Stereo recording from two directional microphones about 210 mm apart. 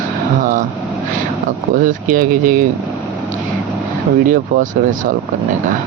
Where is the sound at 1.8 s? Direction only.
40° right (ahead or behind).